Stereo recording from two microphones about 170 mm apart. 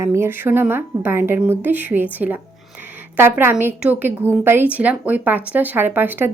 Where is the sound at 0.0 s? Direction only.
15° right (ahead or behind).